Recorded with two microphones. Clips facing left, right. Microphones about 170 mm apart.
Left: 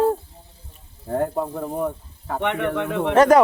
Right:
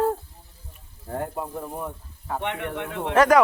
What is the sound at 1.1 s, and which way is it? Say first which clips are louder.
Speech: left 7 dB; 40° left (ahead or behind).